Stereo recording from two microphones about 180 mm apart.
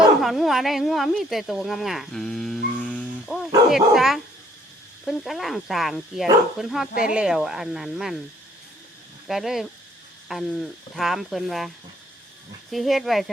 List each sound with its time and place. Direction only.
0.2 s speech: centre (ahead or behind)
9.2 s speech: centre (ahead or behind)
12.7 s speech: centre (ahead or behind)